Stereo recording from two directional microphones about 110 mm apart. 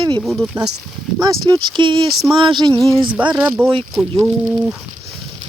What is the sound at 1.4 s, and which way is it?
Speech, 40° right (ahead or behind).